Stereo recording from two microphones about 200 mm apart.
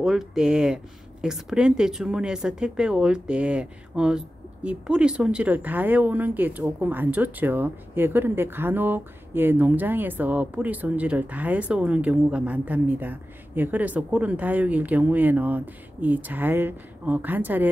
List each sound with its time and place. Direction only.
0.0 s speech: centre (ahead or behind)